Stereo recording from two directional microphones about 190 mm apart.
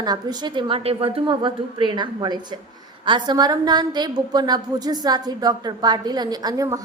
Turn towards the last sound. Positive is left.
turn(degrees=-20)  # may be behind; listen again after turning